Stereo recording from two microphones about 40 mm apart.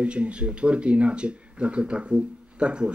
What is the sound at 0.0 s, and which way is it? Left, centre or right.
Speech, right.